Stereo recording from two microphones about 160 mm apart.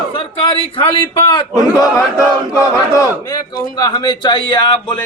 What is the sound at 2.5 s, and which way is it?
A man's voice, 20° left (ahead or behind).